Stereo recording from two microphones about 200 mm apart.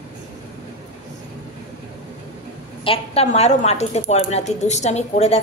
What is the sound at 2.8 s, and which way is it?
Speech, 30° left (ahead or behind).